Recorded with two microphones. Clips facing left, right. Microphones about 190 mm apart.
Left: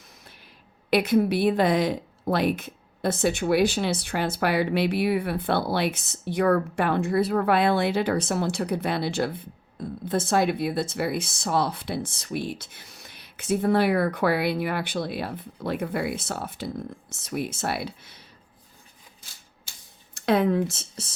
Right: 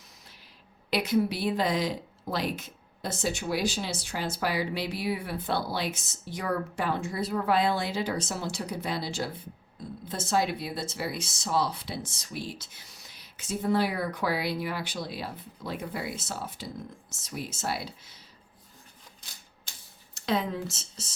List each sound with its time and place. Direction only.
0.9 s a woman's voice: 55° left (ahead or behind)
20.1 s a woman's voice: 60° left (ahead or behind)